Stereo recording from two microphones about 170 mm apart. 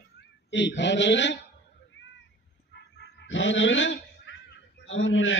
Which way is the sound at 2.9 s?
90° left.